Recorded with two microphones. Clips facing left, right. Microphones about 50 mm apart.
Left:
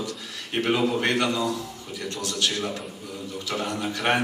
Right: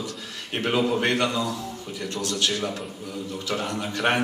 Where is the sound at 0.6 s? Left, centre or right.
Centre.